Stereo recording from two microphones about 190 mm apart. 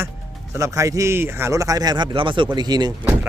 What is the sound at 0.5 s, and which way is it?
Speech, 15° right (ahead or behind).